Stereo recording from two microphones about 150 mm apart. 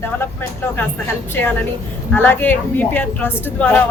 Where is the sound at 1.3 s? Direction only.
15° left (ahead or behind).